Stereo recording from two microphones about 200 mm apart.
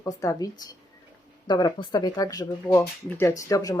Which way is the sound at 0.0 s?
15° left (ahead or behind).